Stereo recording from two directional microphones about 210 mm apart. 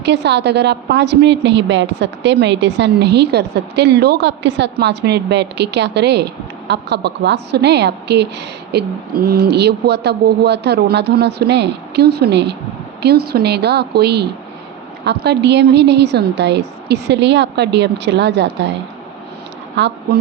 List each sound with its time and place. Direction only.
0.0 s a woman's voice: 55° right (ahead or behind)
19.7 s speech: 55° right (ahead or behind)